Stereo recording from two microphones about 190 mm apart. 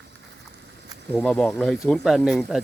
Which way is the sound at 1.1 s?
5° left (ahead or behind).